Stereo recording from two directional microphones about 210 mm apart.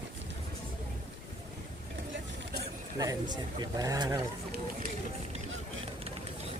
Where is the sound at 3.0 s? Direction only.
20° right (ahead or behind).